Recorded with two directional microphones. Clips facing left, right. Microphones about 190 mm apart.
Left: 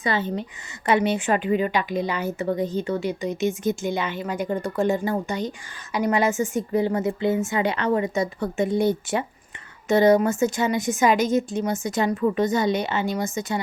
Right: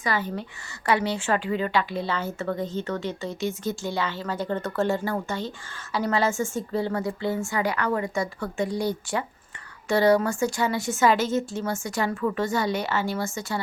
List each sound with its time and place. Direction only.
0.0 s a woman's voice: 25° left (ahead or behind)